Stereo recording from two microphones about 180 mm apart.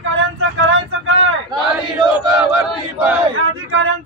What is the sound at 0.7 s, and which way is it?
Speech, 90° right.